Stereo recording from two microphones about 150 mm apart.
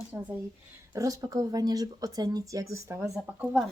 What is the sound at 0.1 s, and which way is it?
Speech, 15° right (ahead or behind).